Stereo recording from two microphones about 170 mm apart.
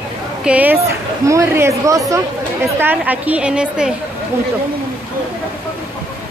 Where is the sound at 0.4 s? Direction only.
10° right (ahead or behind).